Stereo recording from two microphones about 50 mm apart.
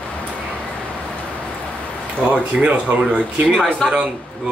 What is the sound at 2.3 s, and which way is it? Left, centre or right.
Speech, right.